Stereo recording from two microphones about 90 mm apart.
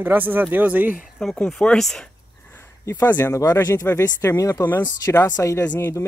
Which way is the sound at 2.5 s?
25° left (ahead or behind).